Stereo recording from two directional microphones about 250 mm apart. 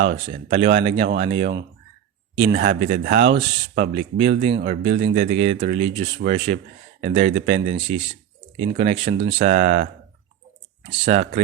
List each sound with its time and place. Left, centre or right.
0.1 s speech: right
11.0 s speech: right